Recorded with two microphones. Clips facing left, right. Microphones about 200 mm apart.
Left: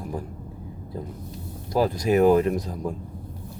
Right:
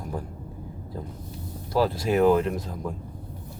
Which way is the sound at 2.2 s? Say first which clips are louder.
Left 2 dB; 15° left (ahead or behind).